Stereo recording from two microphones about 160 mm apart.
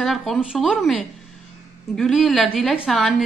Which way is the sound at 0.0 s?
Centre (ahead or behind).